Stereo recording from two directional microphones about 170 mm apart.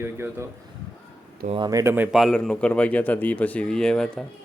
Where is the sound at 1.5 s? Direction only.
25° right (ahead or behind).